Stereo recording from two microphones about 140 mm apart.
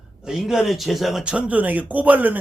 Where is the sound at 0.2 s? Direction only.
5° right (ahead or behind).